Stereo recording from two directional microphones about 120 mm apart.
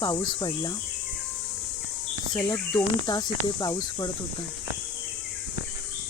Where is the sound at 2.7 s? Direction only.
40° left (ahead or behind).